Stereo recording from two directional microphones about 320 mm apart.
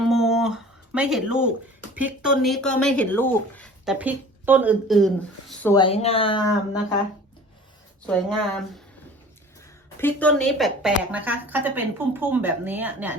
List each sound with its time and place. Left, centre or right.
0.0 s music: centre
2.0 s speech: centre
5.7 s speech: centre
8.0 s speech: centre
10.0 s speech: centre